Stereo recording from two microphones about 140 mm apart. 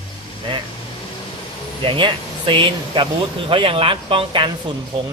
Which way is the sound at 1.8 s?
35° right (ahead or behind).